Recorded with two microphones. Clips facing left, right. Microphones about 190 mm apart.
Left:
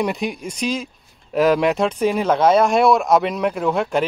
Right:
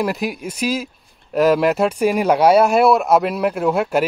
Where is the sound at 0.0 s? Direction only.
5° right (ahead or behind).